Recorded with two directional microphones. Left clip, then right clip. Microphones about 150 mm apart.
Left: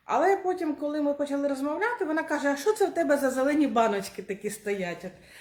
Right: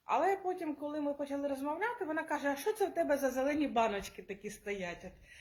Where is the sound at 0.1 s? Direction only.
10° left (ahead or behind).